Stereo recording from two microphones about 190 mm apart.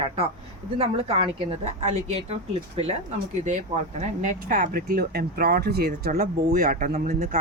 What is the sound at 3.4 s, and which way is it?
Speech, 40° right (ahead or behind).